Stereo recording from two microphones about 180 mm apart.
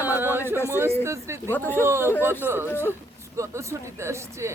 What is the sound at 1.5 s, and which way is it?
Speech, 10° left (ahead or behind).